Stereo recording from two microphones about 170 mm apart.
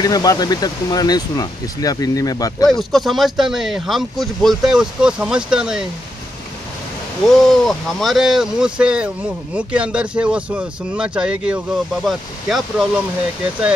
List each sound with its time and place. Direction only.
0.0 s speech: 20° left (ahead or behind)
2.6 s speech: centre (ahead or behind)
7.2 s speech: centre (ahead or behind)